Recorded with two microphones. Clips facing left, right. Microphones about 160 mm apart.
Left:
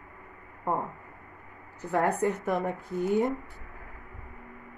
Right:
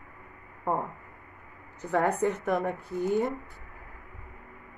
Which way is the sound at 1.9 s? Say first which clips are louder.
Even; centre (ahead or behind).